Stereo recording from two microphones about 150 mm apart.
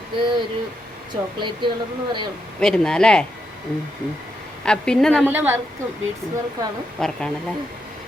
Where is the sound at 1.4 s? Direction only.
30° right (ahead or behind).